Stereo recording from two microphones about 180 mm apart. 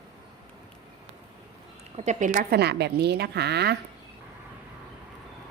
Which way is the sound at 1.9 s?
40° right (ahead or behind).